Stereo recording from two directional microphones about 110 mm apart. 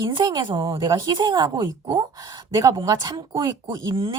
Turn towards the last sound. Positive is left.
turn(degrees=-45)  # may be behind; listen again after turning